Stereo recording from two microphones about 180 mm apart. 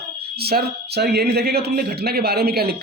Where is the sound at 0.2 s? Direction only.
60° right (ahead or behind).